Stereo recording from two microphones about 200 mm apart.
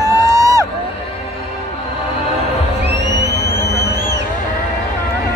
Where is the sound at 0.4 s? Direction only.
15° right (ahead or behind).